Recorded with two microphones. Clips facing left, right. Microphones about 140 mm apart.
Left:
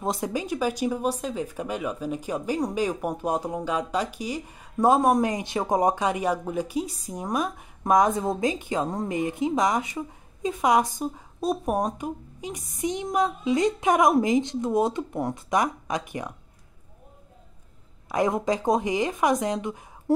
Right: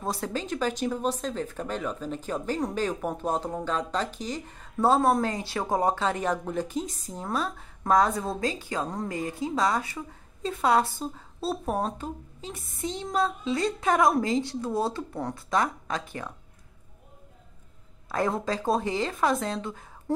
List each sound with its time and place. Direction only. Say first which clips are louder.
0.0 s speech: left 3 dB; 20° left (ahead or behind)
18.0 s speech: left 4 dB; 15° left (ahead or behind)